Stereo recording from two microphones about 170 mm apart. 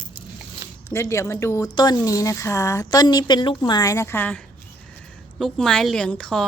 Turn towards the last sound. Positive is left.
turn(degrees=5)  # may be behind; listen again after turning